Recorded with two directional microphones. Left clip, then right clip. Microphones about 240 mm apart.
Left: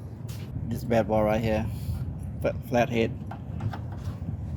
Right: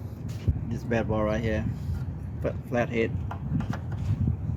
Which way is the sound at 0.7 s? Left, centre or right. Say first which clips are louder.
Left 4 dB; left.